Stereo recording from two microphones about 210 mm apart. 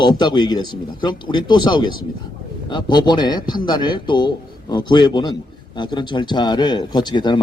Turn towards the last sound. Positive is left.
turn(degrees=20)  # may be behind; listen again after turning